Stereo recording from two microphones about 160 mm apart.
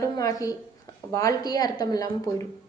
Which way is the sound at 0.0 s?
20° left (ahead or behind).